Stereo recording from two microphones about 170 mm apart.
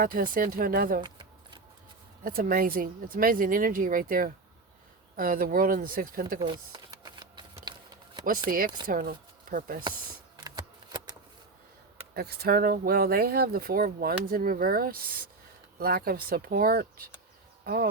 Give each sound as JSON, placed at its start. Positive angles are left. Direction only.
{"t": 0.0, "sound": "speech", "side_deg": -55}
{"t": 1.0, "sound": "a sound", "side_deg": -25}
{"t": 2.2, "sound": "speech", "side_deg": -60}
{"t": 6.4, "sound": "a sound", "side_deg": -25}
{"t": 8.4, "sound": "speech", "side_deg": -55}
{"t": 10.4, "sound": "shuffling cards", "side_deg": -25}
{"t": 12.1, "sound": "speech", "side_deg": -70}